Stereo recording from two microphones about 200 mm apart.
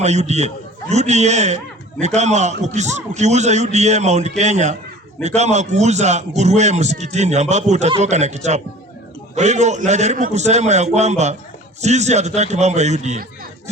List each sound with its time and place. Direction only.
0.0 s a man's voice: 35° right (ahead or behind)